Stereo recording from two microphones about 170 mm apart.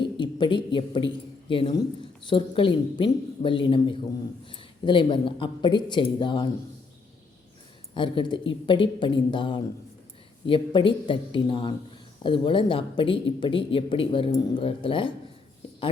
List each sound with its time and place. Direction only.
0.0 s speech: 30° left (ahead or behind)
7.9 s speech: 30° left (ahead or behind)